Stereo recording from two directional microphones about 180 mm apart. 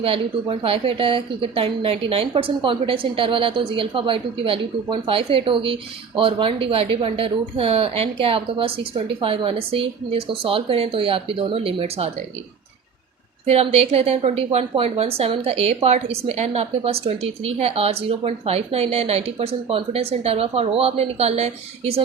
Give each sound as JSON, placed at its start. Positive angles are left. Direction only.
{"t": 0.0, "sound": "a woman's voice", "side_deg": -30}
{"t": 13.5, "sound": "a woman's voice", "side_deg": -35}